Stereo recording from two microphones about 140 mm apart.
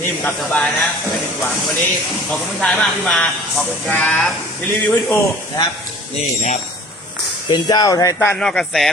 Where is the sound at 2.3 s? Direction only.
5° left (ahead or behind).